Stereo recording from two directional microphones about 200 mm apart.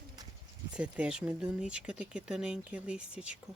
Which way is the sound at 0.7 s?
5° right (ahead or behind).